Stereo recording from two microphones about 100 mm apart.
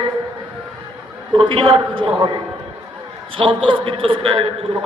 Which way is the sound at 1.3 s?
60° right (ahead or behind).